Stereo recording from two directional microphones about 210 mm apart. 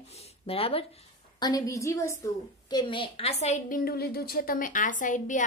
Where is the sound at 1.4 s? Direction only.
15° left (ahead or behind).